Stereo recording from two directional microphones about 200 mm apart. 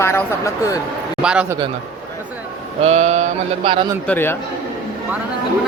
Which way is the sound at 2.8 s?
35° right (ahead or behind).